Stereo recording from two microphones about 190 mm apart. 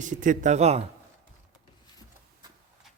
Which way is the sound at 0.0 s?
40° right (ahead or behind).